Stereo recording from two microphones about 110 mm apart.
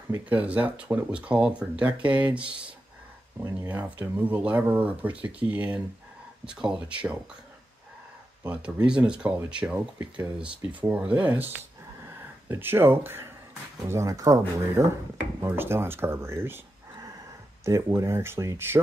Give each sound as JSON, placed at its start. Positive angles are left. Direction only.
{"t": 0.3, "sound": "speech", "side_deg": -15}
{"t": 3.5, "sound": "speech", "side_deg": -15}
{"t": 8.5, "sound": "speech", "side_deg": -10}
{"t": 12.0, "sound": "a sound", "side_deg": -20}
{"t": 13.8, "sound": "speech", "side_deg": -30}
{"t": 15.4, "sound": "speech", "side_deg": -20}
{"t": 17.6, "sound": "speech", "side_deg": -30}